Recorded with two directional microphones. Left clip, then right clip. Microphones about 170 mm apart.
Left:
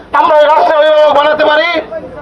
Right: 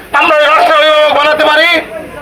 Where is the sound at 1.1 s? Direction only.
15° left (ahead or behind).